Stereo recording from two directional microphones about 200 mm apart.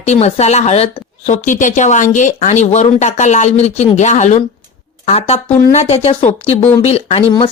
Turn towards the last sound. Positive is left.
turn(degrees=30)  # may be behind; listen again after turning